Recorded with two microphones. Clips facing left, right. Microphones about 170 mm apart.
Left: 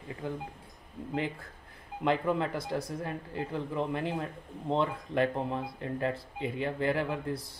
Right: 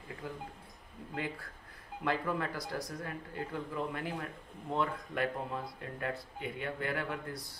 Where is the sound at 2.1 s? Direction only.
20° left (ahead or behind).